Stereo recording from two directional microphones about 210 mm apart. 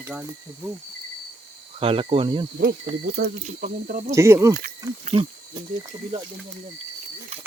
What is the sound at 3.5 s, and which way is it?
Speech, 35° right (ahead or behind).